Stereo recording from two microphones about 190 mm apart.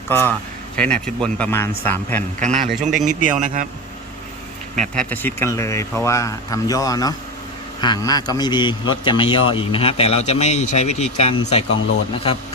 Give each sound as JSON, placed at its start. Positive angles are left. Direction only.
{"t": 0.1, "sound": "speech", "side_deg": 10}
{"t": 2.4, "sound": "a man's voice", "side_deg": -40}
{"t": 4.9, "sound": "a man's voice", "side_deg": 10}